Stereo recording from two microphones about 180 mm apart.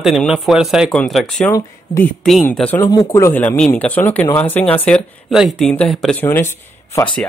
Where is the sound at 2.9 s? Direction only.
20° left (ahead or behind); by 6.2 s 5° left (ahead or behind).